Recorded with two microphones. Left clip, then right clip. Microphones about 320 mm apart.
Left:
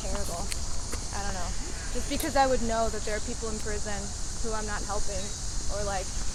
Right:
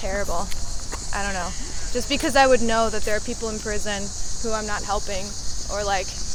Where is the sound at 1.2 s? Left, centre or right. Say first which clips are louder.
Right 10 dB; right.